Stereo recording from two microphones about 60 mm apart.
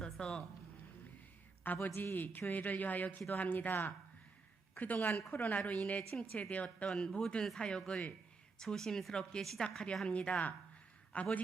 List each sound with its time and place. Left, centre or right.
0.0 s a sound: centre
1.6 s a man's voice: left
6.9 s speech: centre
9.6 s speech: centre